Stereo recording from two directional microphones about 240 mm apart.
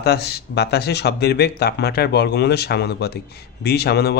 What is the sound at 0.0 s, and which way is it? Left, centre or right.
A man's voice, left.